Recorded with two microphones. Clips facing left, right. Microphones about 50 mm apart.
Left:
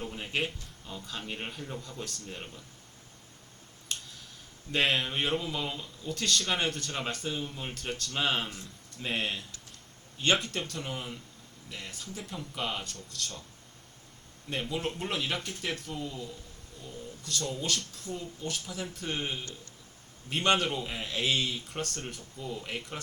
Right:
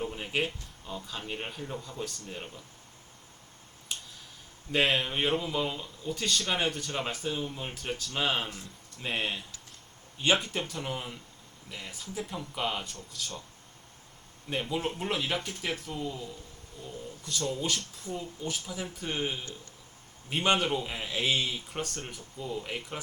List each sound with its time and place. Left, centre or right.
0.0 s speech: centre
3.9 s a sound: centre
4.7 s speech: centre
14.5 s speech: centre